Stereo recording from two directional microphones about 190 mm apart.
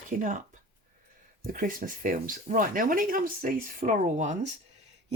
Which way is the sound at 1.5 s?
45° right (ahead or behind).